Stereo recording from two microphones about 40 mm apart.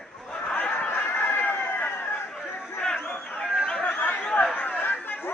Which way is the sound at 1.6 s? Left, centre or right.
Left.